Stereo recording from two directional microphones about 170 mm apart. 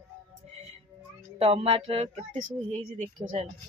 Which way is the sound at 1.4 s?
35° right (ahead or behind).